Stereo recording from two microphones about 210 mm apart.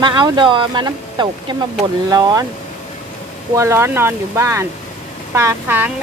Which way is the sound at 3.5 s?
15° right (ahead or behind).